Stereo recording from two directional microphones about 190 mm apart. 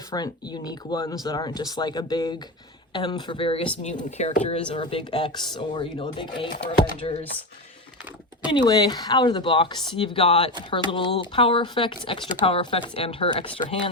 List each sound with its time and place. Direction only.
0.1 s speech: 20° left (ahead or behind)
8.4 s speech: 25° left (ahead or behind)